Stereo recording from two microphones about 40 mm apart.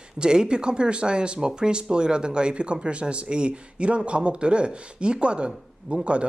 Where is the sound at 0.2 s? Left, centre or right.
Right.